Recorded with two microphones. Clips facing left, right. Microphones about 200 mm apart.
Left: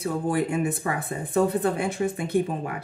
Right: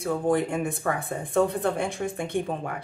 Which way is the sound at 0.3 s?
5° left (ahead or behind).